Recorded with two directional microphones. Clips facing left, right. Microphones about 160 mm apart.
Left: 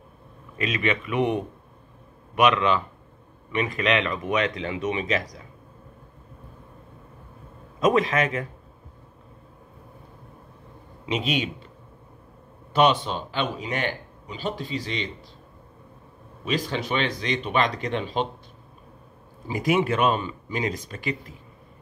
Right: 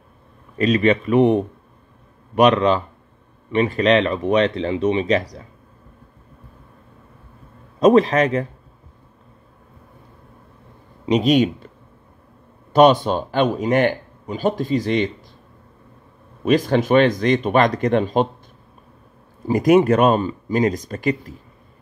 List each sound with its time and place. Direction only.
0.6 s speech: 35° right (ahead or behind)
7.8 s speech: 35° right (ahead or behind)
11.1 s speech: 40° right (ahead or behind)
12.7 s a man's voice: 40° right (ahead or behind)
16.4 s a man's voice: 50° right (ahead or behind)
19.4 s a man's voice: 45° right (ahead or behind)